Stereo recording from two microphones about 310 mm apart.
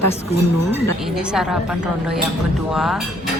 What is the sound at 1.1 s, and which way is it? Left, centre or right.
A woman's voice, centre.